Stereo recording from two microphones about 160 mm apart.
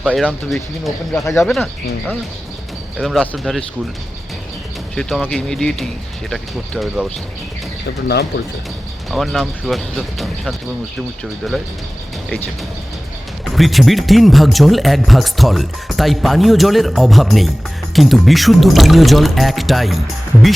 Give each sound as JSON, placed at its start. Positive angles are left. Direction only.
{"t": 0.0, "sound": "speech", "side_deg": 0}
{"t": 3.0, "sound": "speech", "side_deg": 0}
{"t": 4.9, "sound": "speech", "side_deg": 0}
{"t": 8.0, "sound": "speech", "side_deg": 90}
{"t": 9.0, "sound": "speech", "side_deg": 0}
{"t": 13.4, "sound": "speech", "side_deg": 0}